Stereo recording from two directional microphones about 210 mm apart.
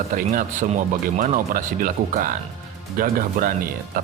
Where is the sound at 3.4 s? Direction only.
40° right (ahead or behind).